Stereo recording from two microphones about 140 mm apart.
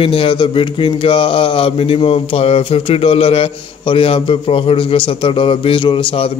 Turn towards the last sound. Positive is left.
turn(degrees=40)  # may be behind; listen again after turning